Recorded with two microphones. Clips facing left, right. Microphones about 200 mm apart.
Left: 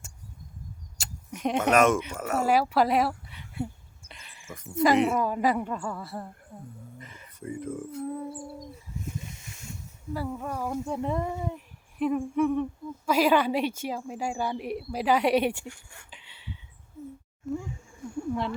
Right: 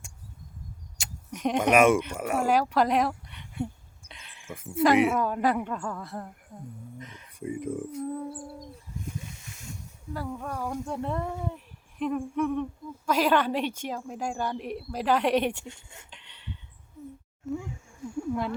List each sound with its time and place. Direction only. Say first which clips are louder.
0.9 s a sound: right 1 dB; 5° left (ahead or behind)
1.7 s speech: right 2 dB; 10° right (ahead or behind)
2.5 s speech: left 1 dB; 10° left (ahead or behind)
7.3 s speech: right 2 dB; 15° right (ahead or behind)
8.1 s speech: even; centre (ahead or behind)
10.1 s speech: left 2 dB; 5° left (ahead or behind)
15.6 s speech: left 1 dB; 20° right (ahead or behind)
16.0 s a sound: even; 5° left (ahead or behind)
17.5 s speech: left 1 dB; centre (ahead or behind)